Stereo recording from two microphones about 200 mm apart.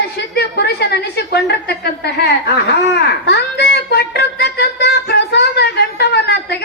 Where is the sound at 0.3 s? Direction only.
55° left (ahead or behind).